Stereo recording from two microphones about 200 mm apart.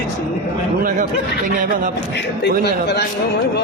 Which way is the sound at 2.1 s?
55° left (ahead or behind).